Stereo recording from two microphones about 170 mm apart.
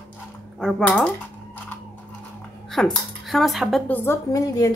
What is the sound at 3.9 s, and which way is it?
Speech, 15° left (ahead or behind).